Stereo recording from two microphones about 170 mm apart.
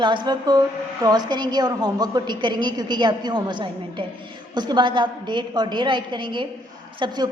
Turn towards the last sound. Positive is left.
turn(degrees=-30)  # may be behind; listen again after turning